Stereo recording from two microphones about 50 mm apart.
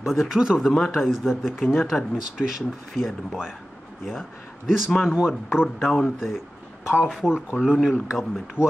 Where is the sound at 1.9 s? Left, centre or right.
Centre.